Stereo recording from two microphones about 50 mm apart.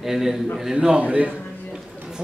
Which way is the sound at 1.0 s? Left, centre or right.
Right.